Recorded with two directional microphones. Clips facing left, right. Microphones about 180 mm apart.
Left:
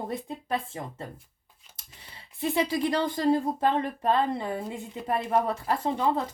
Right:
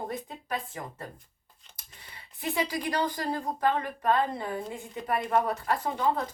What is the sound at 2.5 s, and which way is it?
Speech, 25° left (ahead or behind).